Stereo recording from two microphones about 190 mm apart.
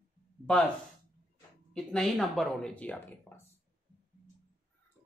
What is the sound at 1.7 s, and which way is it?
Speech, centre (ahead or behind).